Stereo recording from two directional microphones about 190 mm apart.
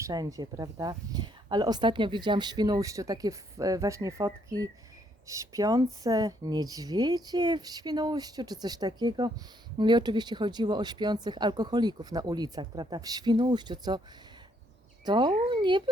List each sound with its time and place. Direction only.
0.0 s speech: 20° right (ahead or behind)
15.0 s speech: 25° right (ahead or behind)